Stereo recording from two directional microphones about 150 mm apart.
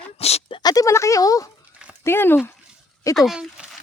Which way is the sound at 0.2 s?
45° left (ahead or behind).